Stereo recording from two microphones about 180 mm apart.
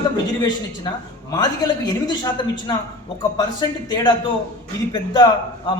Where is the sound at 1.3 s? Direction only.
20° left (ahead or behind).